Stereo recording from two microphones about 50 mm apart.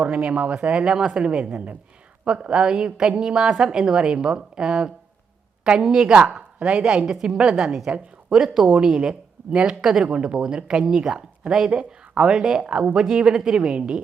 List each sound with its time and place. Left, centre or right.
0.0 s a woman's voice: right